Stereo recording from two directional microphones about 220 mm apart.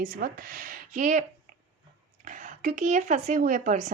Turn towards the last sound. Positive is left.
turn(degrees=-35)  # may be behind; listen again after turning